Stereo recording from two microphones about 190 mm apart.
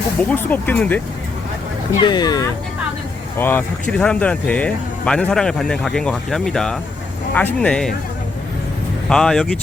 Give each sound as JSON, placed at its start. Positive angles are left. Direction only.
{"t": 0.3, "sound": "speech", "side_deg": 10}
{"t": 2.0, "sound": "speech", "side_deg": 25}
{"t": 3.3, "sound": "speech", "side_deg": 10}
{"t": 9.0, "sound": "speech", "side_deg": 5}